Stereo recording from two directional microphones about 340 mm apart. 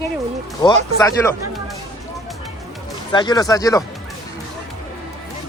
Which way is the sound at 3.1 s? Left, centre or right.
Centre.